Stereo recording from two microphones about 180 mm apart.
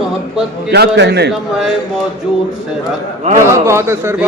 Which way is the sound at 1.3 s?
Centre (ahead or behind).